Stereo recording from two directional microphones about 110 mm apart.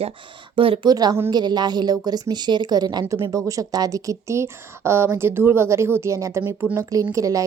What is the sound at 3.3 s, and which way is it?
Speech, 30° right (ahead or behind).